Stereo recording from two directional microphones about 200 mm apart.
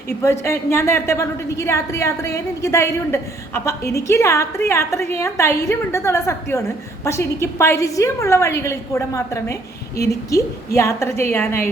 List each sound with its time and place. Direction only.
0.2 s a woman's voice: 15° left (ahead or behind)